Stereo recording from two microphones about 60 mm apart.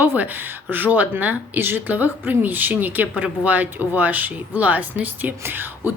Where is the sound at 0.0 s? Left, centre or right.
Right.